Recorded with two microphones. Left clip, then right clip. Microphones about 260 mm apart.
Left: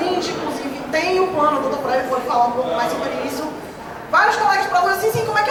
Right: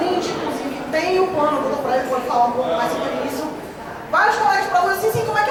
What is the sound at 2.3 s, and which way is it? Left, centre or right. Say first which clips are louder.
Speech: even; centre.